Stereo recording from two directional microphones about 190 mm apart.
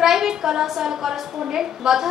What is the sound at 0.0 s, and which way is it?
A woman's voice, 5° right (ahead or behind).